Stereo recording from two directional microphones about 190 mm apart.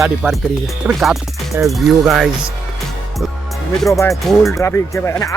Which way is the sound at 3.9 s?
15° left (ahead or behind).